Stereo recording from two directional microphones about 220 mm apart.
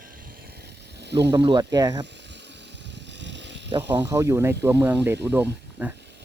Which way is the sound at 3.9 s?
10° right (ahead or behind).